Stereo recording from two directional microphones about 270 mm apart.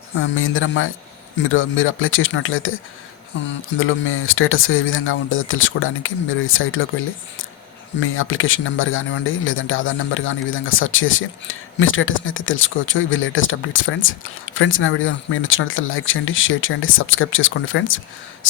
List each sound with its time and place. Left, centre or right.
0.2 s speech: left
8.0 s speech: left